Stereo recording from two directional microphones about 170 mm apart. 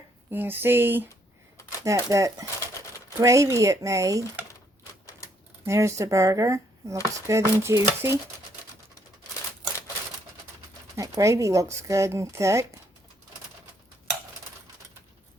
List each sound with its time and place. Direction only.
0.3 s a woman's voice: 10° right (ahead or behind)
5.6 s a woman's voice: 15° right (ahead or behind)
11.2 s a woman's voice: 20° right (ahead or behind)